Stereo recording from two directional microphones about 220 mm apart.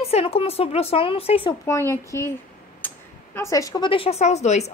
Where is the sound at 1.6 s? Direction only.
10° left (ahead or behind).